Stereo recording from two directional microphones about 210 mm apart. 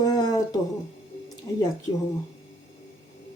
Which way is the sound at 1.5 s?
15° left (ahead or behind).